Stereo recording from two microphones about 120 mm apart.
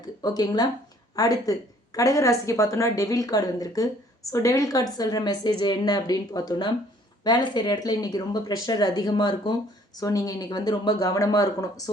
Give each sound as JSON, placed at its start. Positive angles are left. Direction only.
{"t": 0.2, "sound": "a woman's voice", "side_deg": 35}